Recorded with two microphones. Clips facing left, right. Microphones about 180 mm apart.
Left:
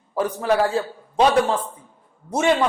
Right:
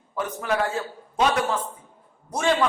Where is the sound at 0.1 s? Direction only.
35° left (ahead or behind).